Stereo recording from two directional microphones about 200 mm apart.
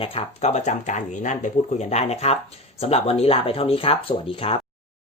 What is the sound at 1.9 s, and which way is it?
Speech, 35° left (ahead or behind).